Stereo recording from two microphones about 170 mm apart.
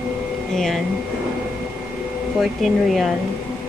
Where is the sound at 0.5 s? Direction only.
Centre (ahead or behind).